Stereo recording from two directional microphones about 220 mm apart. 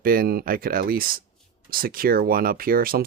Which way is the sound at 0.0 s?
40° right (ahead or behind).